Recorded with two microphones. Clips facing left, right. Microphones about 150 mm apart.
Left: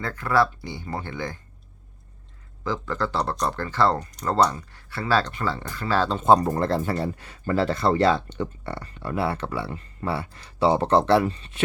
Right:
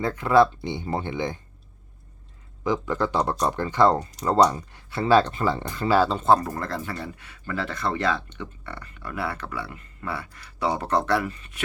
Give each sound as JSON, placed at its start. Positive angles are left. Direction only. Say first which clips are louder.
{"t": 0.0, "sound": "speech", "louder": "right 4 dB", "side_deg": -20}
{"t": 2.6, "sound": "speech", "louder": "right 3 dB", "side_deg": -15}
{"t": 6.0, "sound": "speech", "louder": "even", "side_deg": 0}
{"t": 6.2, "sound": "speech", "louder": "left 3 dB", "side_deg": 20}